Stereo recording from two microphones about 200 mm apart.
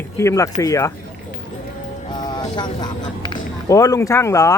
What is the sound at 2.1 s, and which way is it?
Vehicle, 20° left (ahead or behind).